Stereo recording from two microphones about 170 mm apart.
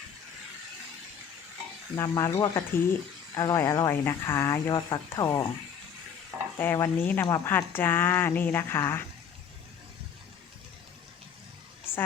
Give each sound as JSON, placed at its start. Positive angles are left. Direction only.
{"t": 2.0, "sound": "speech", "side_deg": 15}
{"t": 6.6, "sound": "speech", "side_deg": 15}